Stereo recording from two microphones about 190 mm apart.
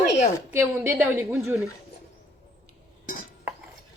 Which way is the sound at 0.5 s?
10° right (ahead or behind).